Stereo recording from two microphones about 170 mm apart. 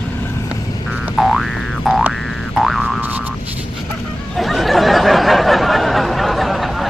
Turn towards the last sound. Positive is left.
turn(degrees=0)  # may be behind; listen again after turning